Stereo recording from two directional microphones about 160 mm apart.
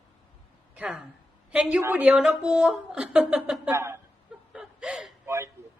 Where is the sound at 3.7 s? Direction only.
15° right (ahead or behind).